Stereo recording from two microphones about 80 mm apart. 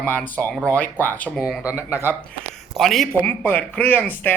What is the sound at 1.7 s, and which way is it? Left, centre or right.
Speech, left.